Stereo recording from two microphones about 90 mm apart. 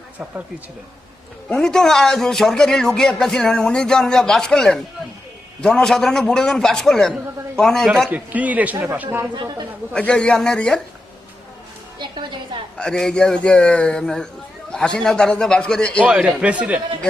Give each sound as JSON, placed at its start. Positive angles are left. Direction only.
{"t": 1.5, "sound": "a man's voice", "side_deg": 5}
{"t": 8.1, "sound": "a man's voice", "side_deg": -20}
{"t": 9.3, "sound": "speech", "side_deg": -50}
{"t": 9.9, "sound": "a man's voice", "side_deg": 10}
{"t": 11.9, "sound": "music", "side_deg": -60}
{"t": 12.7, "sound": "a man's voice", "side_deg": 10}
{"t": 16.0, "sound": "a man's voice", "side_deg": -15}